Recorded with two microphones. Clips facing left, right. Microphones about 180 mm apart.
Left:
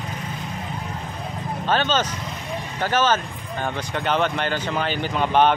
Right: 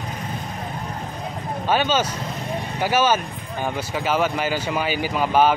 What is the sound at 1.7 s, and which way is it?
Speech, 10° right (ahead or behind).